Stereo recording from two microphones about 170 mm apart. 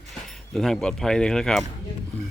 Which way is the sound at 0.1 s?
Centre (ahead or behind).